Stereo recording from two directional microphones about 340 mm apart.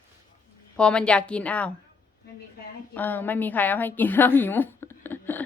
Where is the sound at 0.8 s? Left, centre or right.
Centre.